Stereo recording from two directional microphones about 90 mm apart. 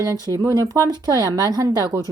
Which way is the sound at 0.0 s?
40° right (ahead or behind).